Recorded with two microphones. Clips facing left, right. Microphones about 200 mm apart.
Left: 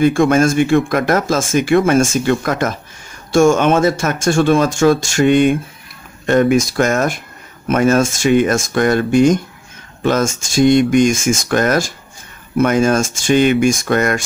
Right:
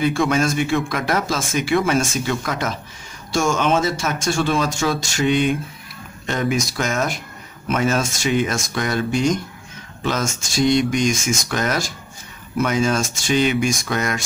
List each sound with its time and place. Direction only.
0.0 s speech: 50° left (ahead or behind)